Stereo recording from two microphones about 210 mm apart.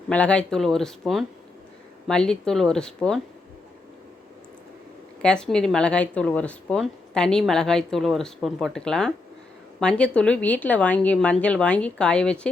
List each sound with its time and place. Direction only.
0.1 s speech: 5° left (ahead or behind)
5.2 s speech: 5° left (ahead or behind)